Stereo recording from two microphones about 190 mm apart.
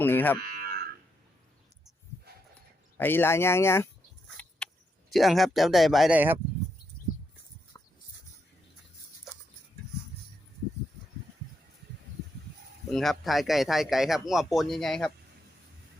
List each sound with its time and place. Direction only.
0.0 s speech: 10° left (ahead or behind)
0.4 s livestock: 55° right (ahead or behind)
3.0 s speech: 10° left (ahead or behind)
4.3 s a sound: 5° left (ahead or behind)
5.1 s speech: centre (ahead or behind)
7.7 s a sound: 20° left (ahead or behind)
12.9 s speech: centre (ahead or behind)